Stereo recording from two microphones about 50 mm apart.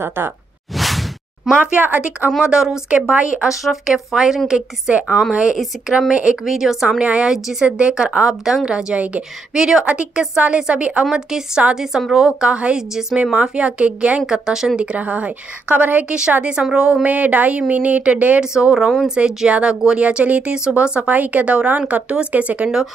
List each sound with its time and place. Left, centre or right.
0.0 s speech: right
0.7 s whoosh: centre
1.6 s speech: right
2.4 s speech: centre
3.4 s a woman's voice: centre
7.0 s a woman's voice: right
9.8 s a woman's voice: right
11.1 s speech: centre
12.4 s a woman's voice: right
14.2 s speech: centre
14.8 s a woman's voice: right
16.1 s a woman's voice: centre
17.0 s a woman's voice: right
18.4 s a woman's voice: centre; by 22.7 s right